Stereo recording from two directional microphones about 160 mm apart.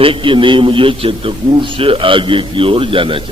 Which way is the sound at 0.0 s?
35° right (ahead or behind).